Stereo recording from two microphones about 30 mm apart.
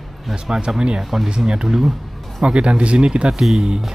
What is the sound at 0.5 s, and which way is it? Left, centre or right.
Speech, right.